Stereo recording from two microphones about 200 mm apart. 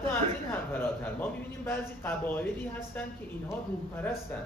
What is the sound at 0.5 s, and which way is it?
A man's voice, 10° left (ahead or behind).